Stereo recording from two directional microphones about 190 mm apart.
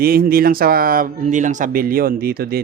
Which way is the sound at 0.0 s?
50° right (ahead or behind).